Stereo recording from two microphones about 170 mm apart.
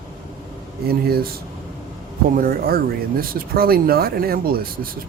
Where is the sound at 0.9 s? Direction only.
65° right (ahead or behind).